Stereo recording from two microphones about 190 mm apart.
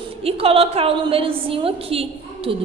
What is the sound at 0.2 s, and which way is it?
A woman's voice, 30° right (ahead or behind).